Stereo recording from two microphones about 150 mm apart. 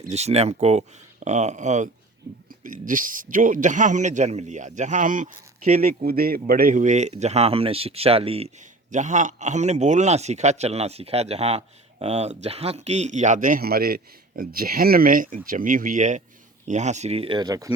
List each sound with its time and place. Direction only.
0.1 s speech: 45° right (ahead or behind)
2.5 s a man's voice: 65° right (ahead or behind)
6.0 s a man's voice: 90° right; by 17.7 s 25° right (ahead or behind)